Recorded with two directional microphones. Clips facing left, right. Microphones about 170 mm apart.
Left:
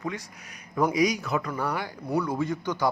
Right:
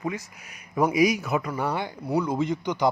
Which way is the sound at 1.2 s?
20° right (ahead or behind).